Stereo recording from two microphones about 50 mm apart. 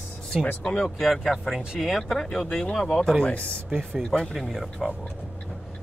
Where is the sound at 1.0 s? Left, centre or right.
Centre.